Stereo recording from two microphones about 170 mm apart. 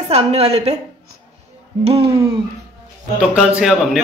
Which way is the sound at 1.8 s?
35° right (ahead or behind).